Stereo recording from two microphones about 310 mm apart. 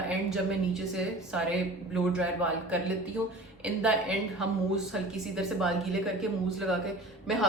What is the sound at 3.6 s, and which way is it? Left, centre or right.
A woman's voice, centre.